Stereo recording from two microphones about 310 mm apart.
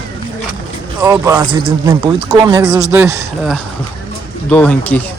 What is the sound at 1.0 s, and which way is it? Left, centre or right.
Speech, centre.